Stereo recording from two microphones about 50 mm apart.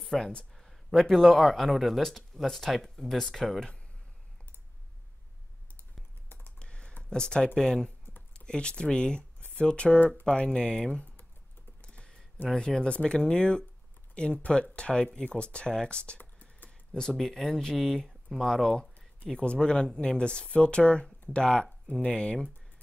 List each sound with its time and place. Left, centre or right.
0.0 s a sound: centre
0.6 s speech: centre
6.6 s computer keyboard: centre
7.0 s speech: centre
11.8 s typing: left
12.5 s speech: centre
16.2 s a sound: left
16.9 s speech: centre